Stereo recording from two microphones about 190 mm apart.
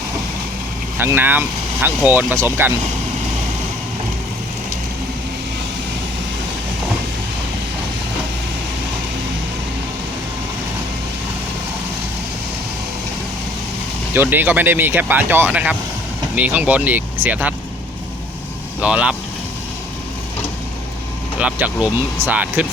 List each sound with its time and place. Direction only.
0.9 s speech: 10° right (ahead or behind)
14.1 s speech: 10° right (ahead or behind)
18.8 s speech: 5° right (ahead or behind)
21.3 s speech: 5° right (ahead or behind)